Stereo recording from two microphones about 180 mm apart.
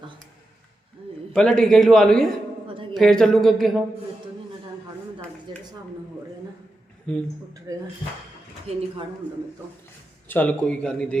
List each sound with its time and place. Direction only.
1.3 s a man's voice: 5° left (ahead or behind)
5.5 s a sound: 25° right (ahead or behind)
7.7 s speech: 20° right (ahead or behind)
8.7 s speech: 35° right (ahead or behind)
10.2 s a man's voice: 10° left (ahead or behind)